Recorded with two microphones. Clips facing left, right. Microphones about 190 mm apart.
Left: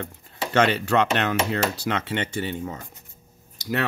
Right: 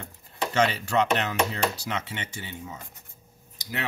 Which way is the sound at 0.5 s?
65° left (ahead or behind).